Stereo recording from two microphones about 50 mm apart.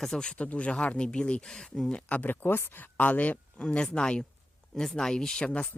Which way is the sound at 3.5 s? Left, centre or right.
Left.